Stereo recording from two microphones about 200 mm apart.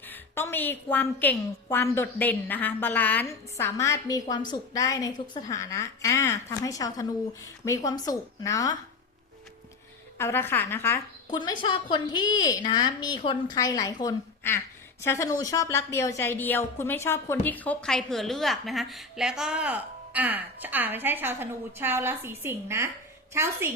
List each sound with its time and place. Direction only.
0.1 s a woman's voice: 10° left (ahead or behind)
10.2 s a woman's voice: 10° left (ahead or behind)
11.3 s a woman's voice: 25° left (ahead or behind); by 23.6 s 15° right (ahead or behind)